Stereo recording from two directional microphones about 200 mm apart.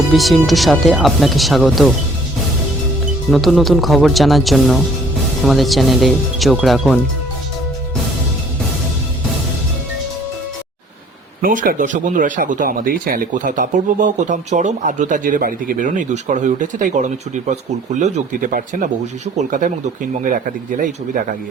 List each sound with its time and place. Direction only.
0.1 s speech: centre (ahead or behind)
3.2 s speech: centre (ahead or behind)
11.4 s speech: 45° right (ahead or behind)